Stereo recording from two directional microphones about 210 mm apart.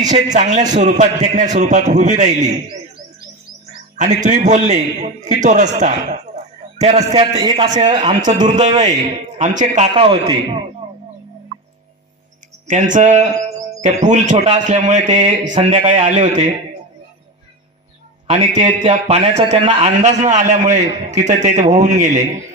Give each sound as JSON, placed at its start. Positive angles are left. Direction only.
{"t": 0.0, "sound": "a man's voice", "side_deg": -35}
{"t": 3.9, "sound": "a man's voice", "side_deg": -35}
{"t": 7.4, "sound": "a man's voice", "side_deg": -20}
{"t": 9.4, "sound": "a man's voice", "side_deg": -35}
{"t": 12.6, "sound": "a man's voice", "side_deg": -35}
{"t": 18.2, "sound": "a man's voice", "side_deg": -30}